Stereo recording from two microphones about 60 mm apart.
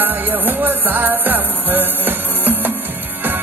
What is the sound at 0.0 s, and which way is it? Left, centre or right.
Music, right.